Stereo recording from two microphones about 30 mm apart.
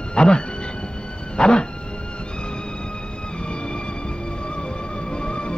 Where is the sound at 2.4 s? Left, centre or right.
Left.